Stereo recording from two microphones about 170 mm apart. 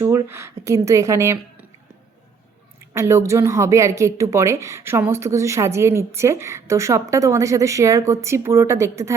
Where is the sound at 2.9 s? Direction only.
15° right (ahead or behind).